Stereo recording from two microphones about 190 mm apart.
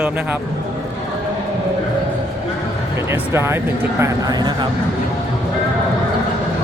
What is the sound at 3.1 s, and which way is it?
Speech, 15° right (ahead or behind).